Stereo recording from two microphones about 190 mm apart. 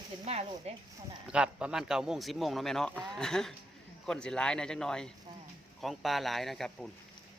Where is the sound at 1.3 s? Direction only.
5° right (ahead or behind).